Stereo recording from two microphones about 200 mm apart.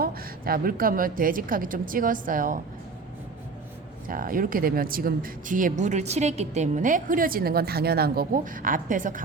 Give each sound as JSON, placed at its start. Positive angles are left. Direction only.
{"t": 0.0, "sound": "a woman's voice", "side_deg": -45}
{"t": 4.1, "sound": "a woman's voice", "side_deg": -45}